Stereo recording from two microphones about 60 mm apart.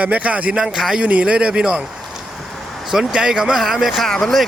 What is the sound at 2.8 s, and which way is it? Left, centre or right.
A man's voice, centre.